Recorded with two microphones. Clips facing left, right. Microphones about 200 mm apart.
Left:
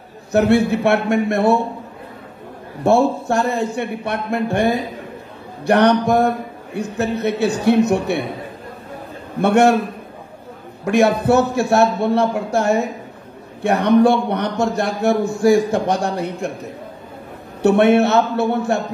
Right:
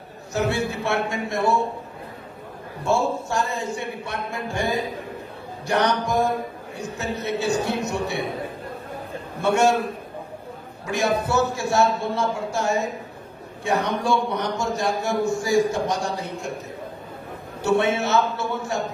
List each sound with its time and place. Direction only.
0.3 s a man's voice: 60° left (ahead or behind)
2.8 s a man's voice: 60° left (ahead or behind)
9.4 s a man's voice: 60° left (ahead or behind)
10.9 s a man's voice: 60° left (ahead or behind)
17.6 s a man's voice: 60° left (ahead or behind)